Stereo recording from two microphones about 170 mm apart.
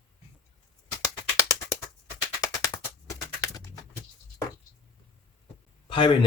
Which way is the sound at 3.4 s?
20° left (ahead or behind).